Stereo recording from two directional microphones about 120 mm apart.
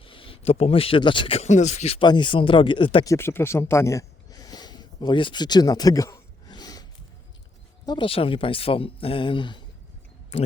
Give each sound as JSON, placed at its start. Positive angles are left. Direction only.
{"t": 0.0, "sound": "a man's voice", "side_deg": 45}
{"t": 1.4, "sound": "speech", "side_deg": 80}
{"t": 2.0, "sound": "speech", "side_deg": 40}
{"t": 3.0, "sound": "speech", "side_deg": 25}
{"t": 6.5, "sound": "a sound", "side_deg": 35}
{"t": 7.9, "sound": "speech", "side_deg": 45}
{"t": 10.3, "sound": "speech", "side_deg": 60}